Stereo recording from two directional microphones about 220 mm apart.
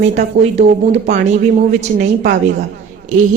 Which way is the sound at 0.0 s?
30° right (ahead or behind).